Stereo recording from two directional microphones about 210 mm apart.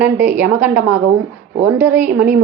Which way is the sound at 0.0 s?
10° right (ahead or behind).